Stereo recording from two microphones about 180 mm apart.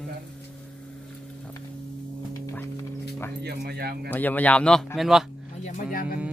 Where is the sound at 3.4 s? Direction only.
65° right (ahead or behind).